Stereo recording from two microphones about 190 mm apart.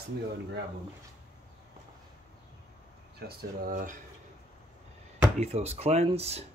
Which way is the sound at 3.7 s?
45° right (ahead or behind).